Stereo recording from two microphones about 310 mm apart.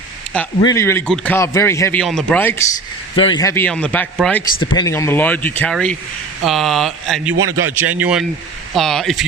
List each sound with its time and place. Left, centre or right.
0.3 s a man's voice: centre
7.3 s a man's voice: right
7.6 s a man's voice: centre